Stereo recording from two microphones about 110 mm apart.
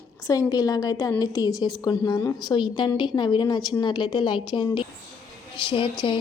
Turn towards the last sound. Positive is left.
turn(degrees=50)  # may be behind; listen again after turning